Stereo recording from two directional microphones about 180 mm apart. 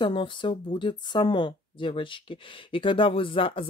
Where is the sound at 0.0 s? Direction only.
25° left (ahead or behind).